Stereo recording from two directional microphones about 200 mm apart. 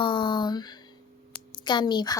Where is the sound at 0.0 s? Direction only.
25° left (ahead or behind).